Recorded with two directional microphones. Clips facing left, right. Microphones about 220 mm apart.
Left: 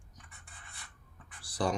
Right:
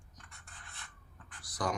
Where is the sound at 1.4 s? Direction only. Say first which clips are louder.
Left 4 dB; 30° left (ahead or behind).